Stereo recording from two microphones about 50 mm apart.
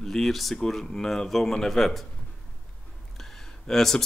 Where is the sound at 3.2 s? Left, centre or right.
Centre.